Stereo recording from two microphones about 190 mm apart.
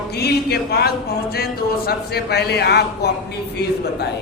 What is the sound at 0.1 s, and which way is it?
Speech, 60° left (ahead or behind).